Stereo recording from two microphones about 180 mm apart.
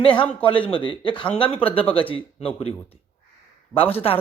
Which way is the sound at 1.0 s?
25° left (ahead or behind).